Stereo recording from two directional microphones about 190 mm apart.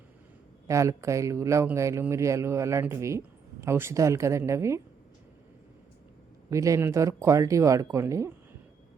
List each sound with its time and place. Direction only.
0.7 s speech: 15° right (ahead or behind)
6.5 s speech: 15° right (ahead or behind)